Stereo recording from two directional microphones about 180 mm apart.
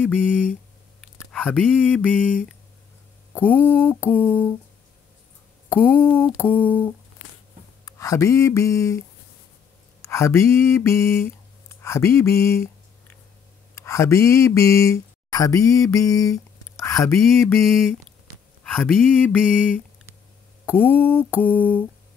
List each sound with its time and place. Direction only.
0.1 s speech: 5° right (ahead or behind)
3.6 s mantra: 10° left (ahead or behind)
5.8 s mantra: 10° left (ahead or behind)
7.8 s speech: 20° left (ahead or behind)
10.0 s a sound: 15° left (ahead or behind)
13.7 s speech: 15° left (ahead or behind)
17.2 s speech: centre (ahead or behind)
20.6 s mantra: 10° left (ahead or behind)